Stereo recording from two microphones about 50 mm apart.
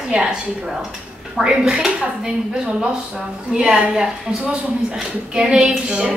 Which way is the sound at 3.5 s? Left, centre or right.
Centre.